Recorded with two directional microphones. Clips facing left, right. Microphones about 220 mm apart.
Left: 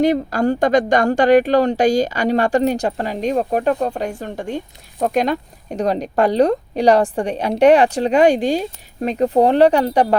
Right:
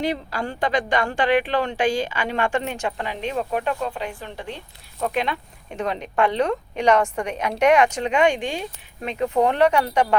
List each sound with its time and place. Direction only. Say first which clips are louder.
0.0 s speech: left 10 dB; 45° left (ahead or behind)